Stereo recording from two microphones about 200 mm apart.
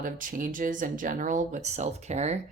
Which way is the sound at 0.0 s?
40° right (ahead or behind).